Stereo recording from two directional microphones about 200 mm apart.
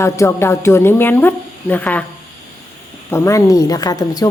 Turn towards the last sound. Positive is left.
turn(degrees=20)  # may be behind; listen again after turning